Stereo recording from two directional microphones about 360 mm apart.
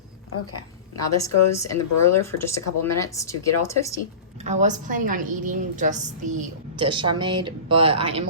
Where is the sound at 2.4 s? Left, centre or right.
Centre.